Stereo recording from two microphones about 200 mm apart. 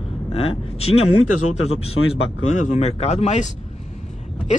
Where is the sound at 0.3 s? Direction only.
30° left (ahead or behind).